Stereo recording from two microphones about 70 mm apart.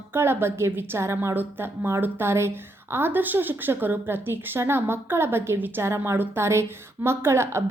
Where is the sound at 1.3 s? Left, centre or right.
Right.